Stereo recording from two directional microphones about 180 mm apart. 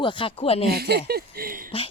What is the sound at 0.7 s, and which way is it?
Speech, 60° right (ahead or behind).